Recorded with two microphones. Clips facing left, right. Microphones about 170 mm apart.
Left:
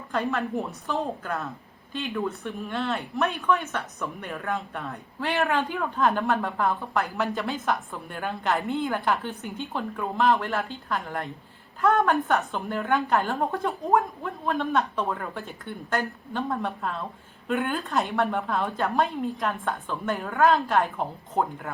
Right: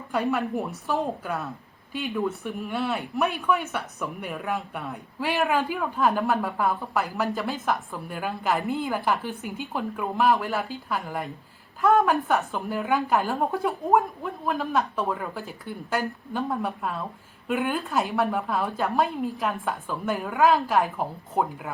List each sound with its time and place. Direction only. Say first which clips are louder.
0.3 s a woman's voice: right 2 dB; 15° right (ahead or behind)
4.0 s a woman's voice: right 1 dB; 15° right (ahead or behind)